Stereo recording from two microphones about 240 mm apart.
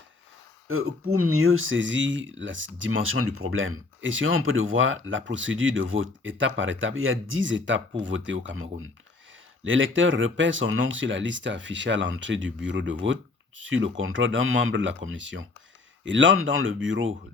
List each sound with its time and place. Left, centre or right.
0.7 s speech: right